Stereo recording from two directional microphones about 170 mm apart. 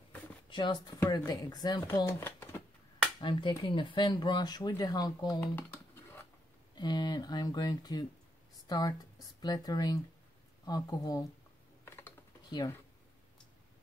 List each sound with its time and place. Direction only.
0.5 s speech: 25° left (ahead or behind)
3.2 s speech: 25° left (ahead or behind)
6.7 s a woman's voice: 25° left (ahead or behind)
11.8 s typing: 15° left (ahead or behind)
12.4 s speech: 25° left (ahead or behind)